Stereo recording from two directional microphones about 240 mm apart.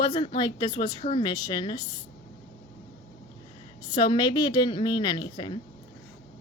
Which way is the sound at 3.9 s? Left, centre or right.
Centre.